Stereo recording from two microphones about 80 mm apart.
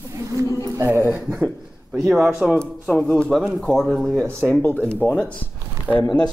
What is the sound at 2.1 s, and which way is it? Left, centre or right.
Speech, centre.